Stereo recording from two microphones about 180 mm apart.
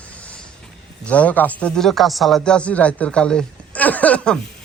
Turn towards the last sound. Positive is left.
turn(degrees=5)  # may be behind; listen again after turning